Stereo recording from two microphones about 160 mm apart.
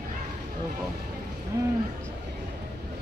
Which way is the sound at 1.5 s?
20° right (ahead or behind).